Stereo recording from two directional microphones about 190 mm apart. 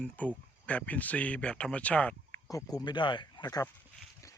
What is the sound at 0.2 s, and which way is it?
Speech, 10° left (ahead or behind).